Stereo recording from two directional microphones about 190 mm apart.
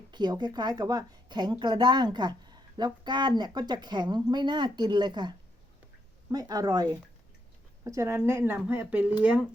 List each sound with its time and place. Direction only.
0.1 s a woman's voice: 25° right (ahead or behind)
6.3 s a woman's voice: 20° right (ahead or behind)